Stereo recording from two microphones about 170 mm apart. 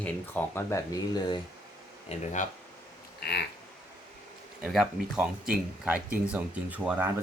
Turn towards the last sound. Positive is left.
turn(degrees=-10)  # may be behind; listen again after turning